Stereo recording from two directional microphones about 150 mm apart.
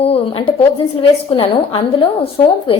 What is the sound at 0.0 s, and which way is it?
A woman's voice, 40° left (ahead or behind).